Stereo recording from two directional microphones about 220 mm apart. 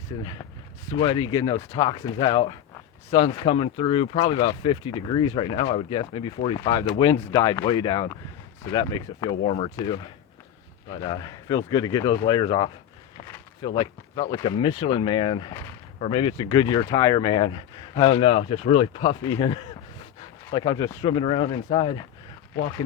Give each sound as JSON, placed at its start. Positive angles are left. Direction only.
{"t": 0.9, "sound": "speech", "side_deg": 25}